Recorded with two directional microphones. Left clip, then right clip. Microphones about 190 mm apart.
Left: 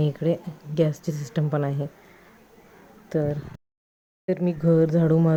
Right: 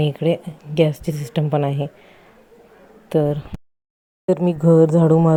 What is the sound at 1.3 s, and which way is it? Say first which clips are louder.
Speech: right 6 dB; 10° right (ahead or behind).